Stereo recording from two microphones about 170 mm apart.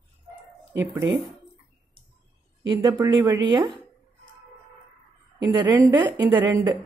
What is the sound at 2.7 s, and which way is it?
A woman's voice, 25° right (ahead or behind).